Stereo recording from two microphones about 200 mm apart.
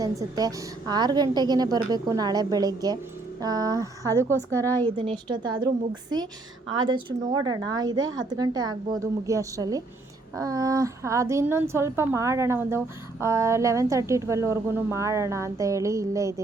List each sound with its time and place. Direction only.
0.0 s a woman's voice: 20° right (ahead or behind)
6.7 s a woman's voice: 20° right (ahead or behind)